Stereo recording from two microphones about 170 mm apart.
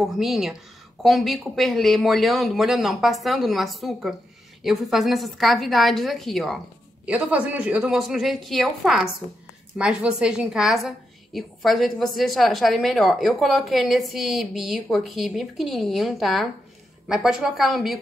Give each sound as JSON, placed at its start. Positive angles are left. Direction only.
{"t": 0.0, "sound": "a woman's voice", "side_deg": 0}